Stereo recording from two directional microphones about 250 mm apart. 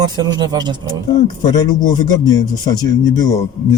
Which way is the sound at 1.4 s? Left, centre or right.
Centre.